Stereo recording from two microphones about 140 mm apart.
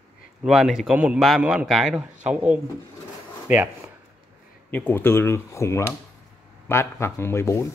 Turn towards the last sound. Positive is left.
turn(degrees=20)  # may be behind; listen again after turning